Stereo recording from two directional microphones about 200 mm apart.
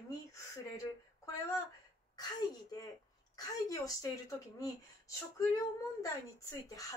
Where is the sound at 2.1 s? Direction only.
20° left (ahead or behind).